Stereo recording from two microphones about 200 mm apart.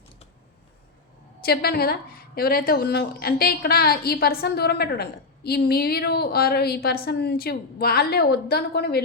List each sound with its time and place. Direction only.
1.4 s a woman's voice: 50° left (ahead or behind)